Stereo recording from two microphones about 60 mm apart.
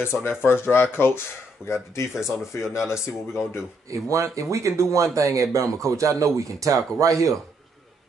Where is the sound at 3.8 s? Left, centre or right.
Right.